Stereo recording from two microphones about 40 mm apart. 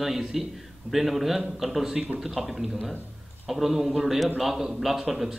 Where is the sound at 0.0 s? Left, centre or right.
Centre.